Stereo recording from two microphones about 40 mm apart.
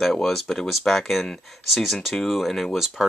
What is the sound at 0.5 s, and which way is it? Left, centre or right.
Speech, centre.